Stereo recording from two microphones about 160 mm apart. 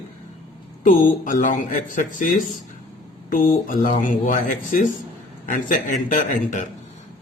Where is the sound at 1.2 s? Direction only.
55° left (ahead or behind).